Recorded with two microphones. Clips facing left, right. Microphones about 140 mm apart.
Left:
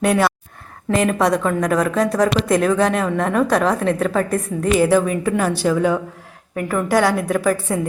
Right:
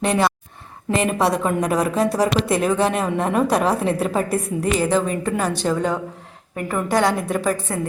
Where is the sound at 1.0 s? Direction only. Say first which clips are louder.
Left 2 dB; 30° right (ahead or behind).